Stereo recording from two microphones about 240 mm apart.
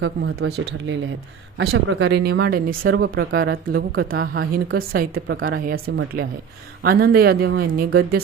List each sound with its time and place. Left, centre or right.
0.0 s speech: right
1.5 s speech: right